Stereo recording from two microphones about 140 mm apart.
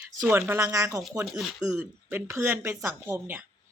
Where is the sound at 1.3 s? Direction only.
5° right (ahead or behind).